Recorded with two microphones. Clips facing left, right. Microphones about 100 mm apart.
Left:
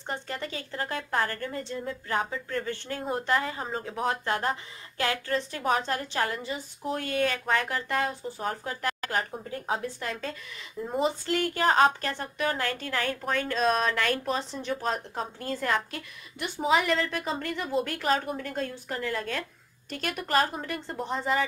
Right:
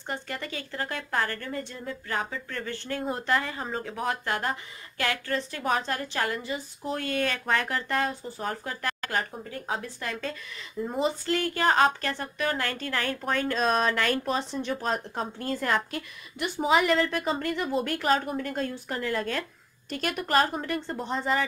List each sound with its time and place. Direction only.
0.0 s speech: 25° left (ahead or behind); by 4.0 s 5° left (ahead or behind)
4.0 s speech: 25° left (ahead or behind)
6.8 s a woman's voice: 10° left (ahead or behind)